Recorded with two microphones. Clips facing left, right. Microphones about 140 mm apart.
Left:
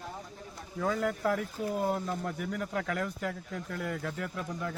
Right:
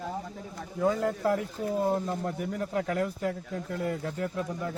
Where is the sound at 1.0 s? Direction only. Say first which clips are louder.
Right 3 dB; 25° right (ahead or behind).